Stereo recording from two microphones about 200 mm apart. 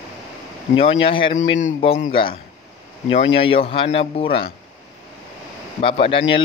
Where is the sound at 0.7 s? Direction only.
25° left (ahead or behind).